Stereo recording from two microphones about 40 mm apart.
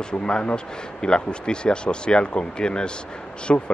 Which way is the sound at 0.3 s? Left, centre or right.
Left.